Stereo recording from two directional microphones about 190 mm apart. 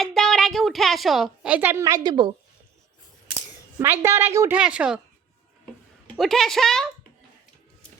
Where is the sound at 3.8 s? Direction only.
15° right (ahead or behind).